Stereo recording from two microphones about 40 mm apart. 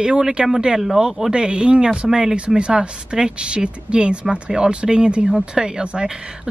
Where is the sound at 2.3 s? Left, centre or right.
Right.